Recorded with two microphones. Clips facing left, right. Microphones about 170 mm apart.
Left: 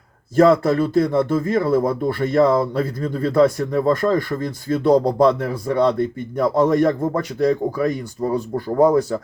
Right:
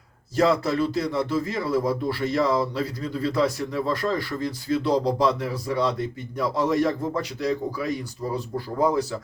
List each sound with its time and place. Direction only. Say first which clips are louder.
0.3 s speech: left 7 dB; 50° left (ahead or behind)